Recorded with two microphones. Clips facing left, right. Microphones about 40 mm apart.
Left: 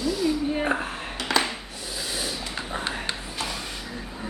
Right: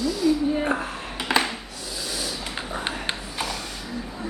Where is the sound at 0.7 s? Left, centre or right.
Left.